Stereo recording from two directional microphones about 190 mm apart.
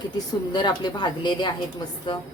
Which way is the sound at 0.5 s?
25° left (ahead or behind).